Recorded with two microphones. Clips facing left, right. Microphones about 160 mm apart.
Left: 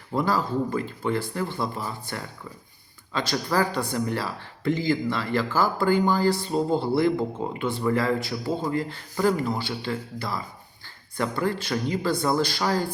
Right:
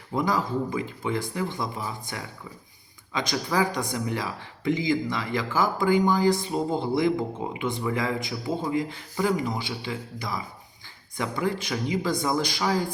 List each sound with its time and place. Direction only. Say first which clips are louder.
0.2 s speech: left 1 dB; 15° right (ahead or behind)